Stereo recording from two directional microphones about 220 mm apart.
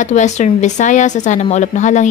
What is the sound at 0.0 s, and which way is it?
Speech, 30° left (ahead or behind).